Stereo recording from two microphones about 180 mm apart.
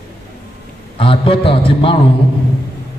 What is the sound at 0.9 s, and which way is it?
A man's voice, 30° left (ahead or behind).